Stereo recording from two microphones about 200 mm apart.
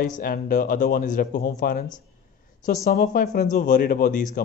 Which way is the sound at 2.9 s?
45° left (ahead or behind).